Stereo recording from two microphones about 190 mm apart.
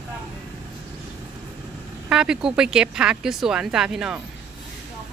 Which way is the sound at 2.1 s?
5° right (ahead or behind).